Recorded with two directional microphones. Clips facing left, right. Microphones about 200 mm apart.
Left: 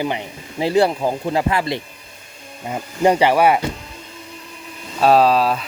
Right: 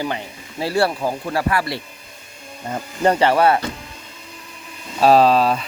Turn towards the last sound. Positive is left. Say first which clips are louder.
# right 1 dB
turn(degrees=0)  # may be behind; listen again after turning